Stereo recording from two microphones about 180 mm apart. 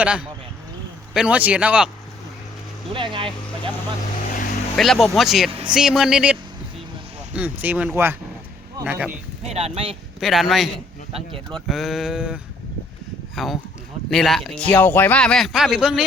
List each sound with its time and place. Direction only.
0.0 s a man's voice: 5° right (ahead or behind)
2.9 s speech: 30° right (ahead or behind)
4.8 s a man's voice: centre (ahead or behind)
7.3 s speech: 10° right (ahead or behind)
9.5 s speech: 35° right (ahead or behind)
10.2 s a man's voice: centre (ahead or behind)
11.1 s speech: 30° right (ahead or behind)
11.6 s a man's voice: centre (ahead or behind)